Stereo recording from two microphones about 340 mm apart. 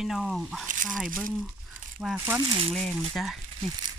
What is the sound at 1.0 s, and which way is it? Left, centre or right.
Speech, right.